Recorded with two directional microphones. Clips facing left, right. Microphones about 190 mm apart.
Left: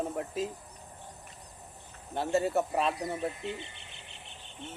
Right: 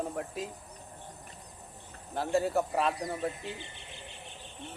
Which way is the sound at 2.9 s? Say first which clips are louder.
Even; 25° left (ahead or behind).